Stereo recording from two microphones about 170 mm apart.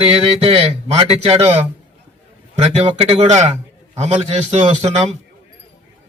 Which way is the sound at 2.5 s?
35° right (ahead or behind).